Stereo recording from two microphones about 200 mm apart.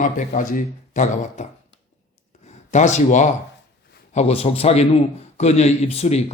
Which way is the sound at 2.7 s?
35° left (ahead or behind).